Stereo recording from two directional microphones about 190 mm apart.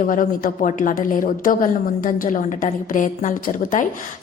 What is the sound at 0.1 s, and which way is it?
A woman's voice, 45° left (ahead or behind).